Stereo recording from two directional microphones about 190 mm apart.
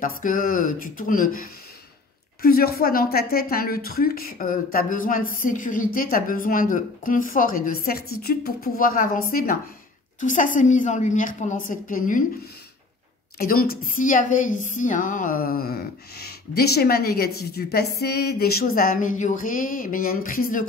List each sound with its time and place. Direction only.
0.0 s a woman's voice: 45° left (ahead or behind)
13.4 s a woman's voice: 50° left (ahead or behind)